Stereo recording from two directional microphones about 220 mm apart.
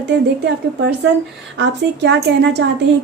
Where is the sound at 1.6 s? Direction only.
50° right (ahead or behind).